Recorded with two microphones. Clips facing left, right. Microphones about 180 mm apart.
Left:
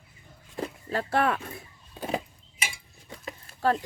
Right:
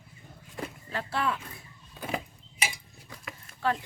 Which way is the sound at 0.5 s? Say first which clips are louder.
Left 5 dB; 40° left (ahead or behind).